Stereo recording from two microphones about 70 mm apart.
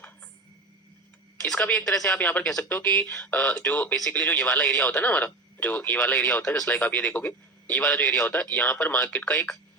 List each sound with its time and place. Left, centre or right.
1.7 s speech: centre
2.1 s speech: left
2.4 s speech: centre
2.6 s speech: left